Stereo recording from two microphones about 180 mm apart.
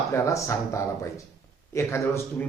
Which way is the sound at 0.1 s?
15° left (ahead or behind).